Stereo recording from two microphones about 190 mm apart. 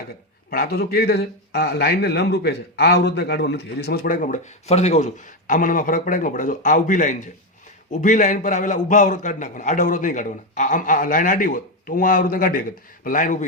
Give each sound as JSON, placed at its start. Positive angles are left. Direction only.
{"t": 0.5, "sound": "speech", "side_deg": 55}